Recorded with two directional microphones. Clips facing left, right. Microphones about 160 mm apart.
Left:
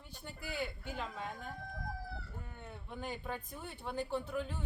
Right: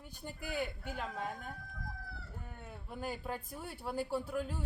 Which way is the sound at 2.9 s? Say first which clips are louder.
Right 2 dB; 5° right (ahead or behind).